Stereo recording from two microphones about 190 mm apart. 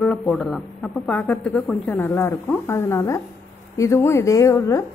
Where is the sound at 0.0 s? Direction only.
5° left (ahead or behind).